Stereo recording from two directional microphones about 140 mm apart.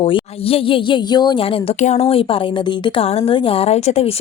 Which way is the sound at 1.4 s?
40° left (ahead or behind).